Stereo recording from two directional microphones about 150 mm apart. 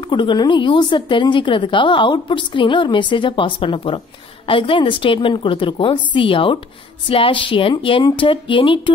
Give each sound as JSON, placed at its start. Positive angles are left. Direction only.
{"t": 0.0, "sound": "a woman's voice", "side_deg": 30}